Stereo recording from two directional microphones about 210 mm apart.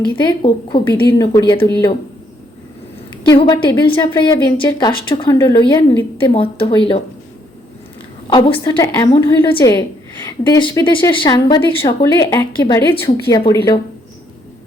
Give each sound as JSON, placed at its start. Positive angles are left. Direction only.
{"t": 0.2, "sound": "a woman's voice", "side_deg": 20}
{"t": 3.2, "sound": "a woman's voice", "side_deg": 20}
{"t": 8.3, "sound": "a woman's voice", "side_deg": 25}